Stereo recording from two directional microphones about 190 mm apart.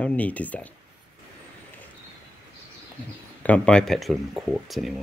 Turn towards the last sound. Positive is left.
turn(degrees=0)  # may be behind; listen again after turning